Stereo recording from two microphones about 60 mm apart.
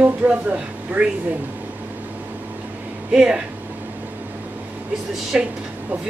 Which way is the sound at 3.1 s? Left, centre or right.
Centre.